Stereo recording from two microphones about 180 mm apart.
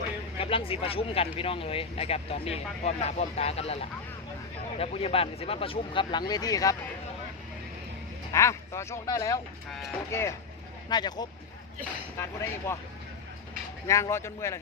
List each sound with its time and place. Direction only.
0.3 s speech: 30° left (ahead or behind)
8.3 s speech: 15° left (ahead or behind)
13.8 s speech: 15° left (ahead or behind)